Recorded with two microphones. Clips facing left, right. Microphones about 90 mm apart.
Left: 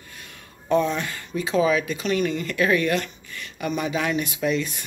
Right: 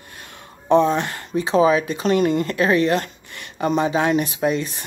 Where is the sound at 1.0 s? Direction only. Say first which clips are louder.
Right 4 dB; 55° right (ahead or behind).